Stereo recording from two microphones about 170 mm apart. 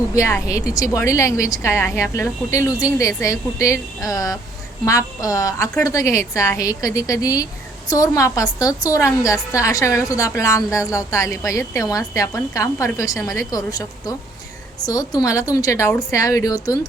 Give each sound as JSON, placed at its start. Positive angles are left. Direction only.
{"t": 0.1, "sound": "a woman's voice", "side_deg": 20}